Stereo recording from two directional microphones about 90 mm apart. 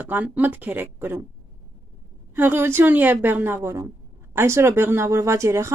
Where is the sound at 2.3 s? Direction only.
25° right (ahead or behind).